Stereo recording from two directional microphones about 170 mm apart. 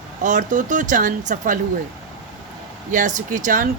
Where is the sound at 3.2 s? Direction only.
50° right (ahead or behind).